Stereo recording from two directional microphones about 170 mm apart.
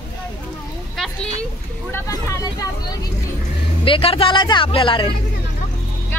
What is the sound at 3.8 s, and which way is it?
Speech, 35° left (ahead or behind).